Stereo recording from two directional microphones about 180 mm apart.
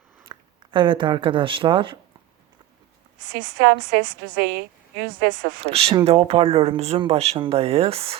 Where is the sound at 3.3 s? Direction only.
65° right (ahead or behind).